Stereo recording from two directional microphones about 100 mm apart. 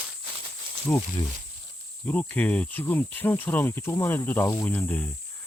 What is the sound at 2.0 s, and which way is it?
Speech, 15° left (ahead or behind).